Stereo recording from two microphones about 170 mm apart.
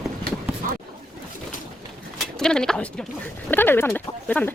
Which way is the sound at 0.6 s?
55° right (ahead or behind).